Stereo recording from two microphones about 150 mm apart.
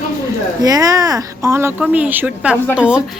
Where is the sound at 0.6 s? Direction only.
25° right (ahead or behind).